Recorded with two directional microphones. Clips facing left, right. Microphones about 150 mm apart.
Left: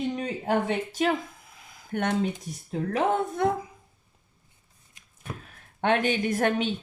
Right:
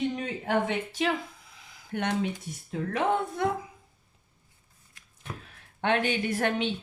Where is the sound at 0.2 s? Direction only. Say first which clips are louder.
Left 2 dB; 40° left (ahead or behind).